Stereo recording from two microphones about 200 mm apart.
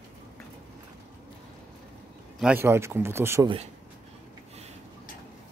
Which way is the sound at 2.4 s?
10° right (ahead or behind).